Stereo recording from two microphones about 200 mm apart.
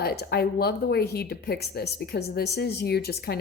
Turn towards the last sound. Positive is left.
turn(degrees=50)  # may be behind; listen again after turning